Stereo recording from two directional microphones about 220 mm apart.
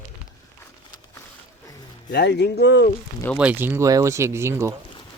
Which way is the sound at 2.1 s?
50° left (ahead or behind).